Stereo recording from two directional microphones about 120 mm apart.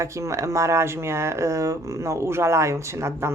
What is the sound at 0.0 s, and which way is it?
Speech, 25° right (ahead or behind).